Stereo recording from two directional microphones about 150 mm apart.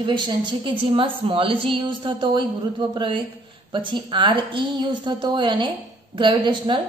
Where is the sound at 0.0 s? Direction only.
30° right (ahead or behind).